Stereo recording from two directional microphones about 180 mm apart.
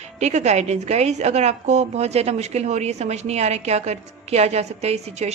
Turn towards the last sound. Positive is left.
turn(degrees=-35)  # may be behind; listen again after turning